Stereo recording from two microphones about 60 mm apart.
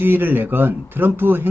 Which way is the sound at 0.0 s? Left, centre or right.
Right.